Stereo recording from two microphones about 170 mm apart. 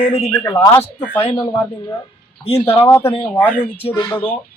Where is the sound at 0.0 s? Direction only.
40° left (ahead or behind).